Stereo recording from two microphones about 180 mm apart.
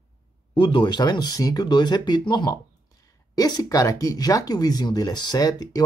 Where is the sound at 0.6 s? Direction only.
25° left (ahead or behind).